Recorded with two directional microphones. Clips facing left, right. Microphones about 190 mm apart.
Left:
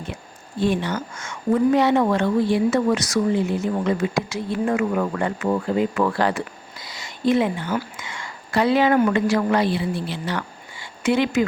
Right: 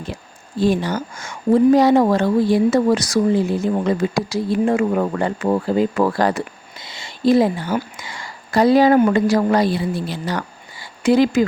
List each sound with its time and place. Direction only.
0.6 s a woman's voice: 35° right (ahead or behind)
6.7 s speech: 25° right (ahead or behind)
7.9 s a sound: 35° right (ahead or behind)
9.1 s a woman's voice: 35° right (ahead or behind)